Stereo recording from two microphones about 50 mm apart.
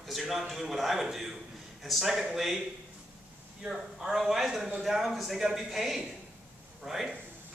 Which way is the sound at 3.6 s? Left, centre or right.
Centre.